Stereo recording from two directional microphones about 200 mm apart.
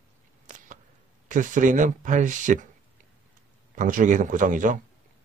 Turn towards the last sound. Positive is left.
turn(degrees=-40)  # may be behind; listen again after turning